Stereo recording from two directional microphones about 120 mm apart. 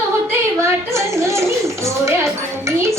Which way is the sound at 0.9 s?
25° right (ahead or behind).